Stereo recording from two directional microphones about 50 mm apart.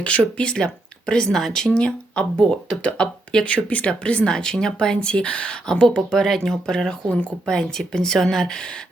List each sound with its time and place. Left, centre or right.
0.0 s speech: left
7.9 s speech: centre